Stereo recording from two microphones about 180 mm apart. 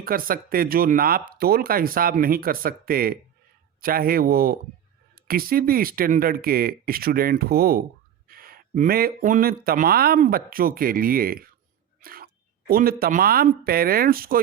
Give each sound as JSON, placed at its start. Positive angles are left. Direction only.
{"t": 0.0, "sound": "speech", "side_deg": -55}